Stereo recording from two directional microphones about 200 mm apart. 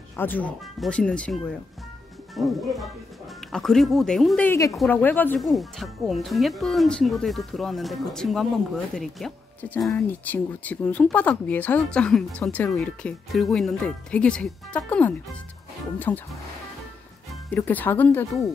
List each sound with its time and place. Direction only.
0.1 s speech: 10° left (ahead or behind)
4.5 s speech: 15° left (ahead or behind)
17.6 s speech: 10° left (ahead or behind)